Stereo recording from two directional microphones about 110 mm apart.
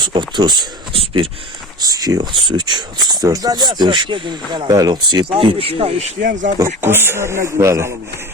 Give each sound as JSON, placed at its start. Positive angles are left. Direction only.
{"t": 0.0, "sound": "speech", "side_deg": -45}
{"t": 1.8, "sound": "speech", "side_deg": -35}
{"t": 5.4, "sound": "speech", "side_deg": -55}
{"t": 6.8, "sound": "a man's voice", "side_deg": -20}